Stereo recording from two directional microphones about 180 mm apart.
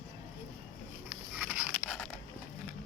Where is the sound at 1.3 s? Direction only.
10° right (ahead or behind).